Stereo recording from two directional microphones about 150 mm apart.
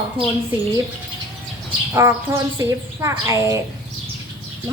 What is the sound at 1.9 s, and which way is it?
Speech, 20° right (ahead or behind).